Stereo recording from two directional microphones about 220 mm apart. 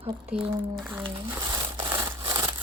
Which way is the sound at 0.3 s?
10° right (ahead or behind).